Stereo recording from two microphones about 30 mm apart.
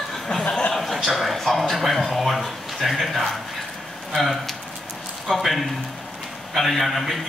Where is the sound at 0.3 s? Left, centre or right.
Left.